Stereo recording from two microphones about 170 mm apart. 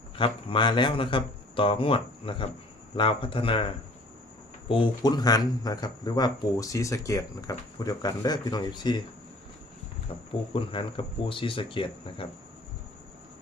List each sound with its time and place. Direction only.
0.2 s speech: 30° left (ahead or behind)
4.7 s speech: 25° left (ahead or behind)
10.5 s speech: 30° left (ahead or behind)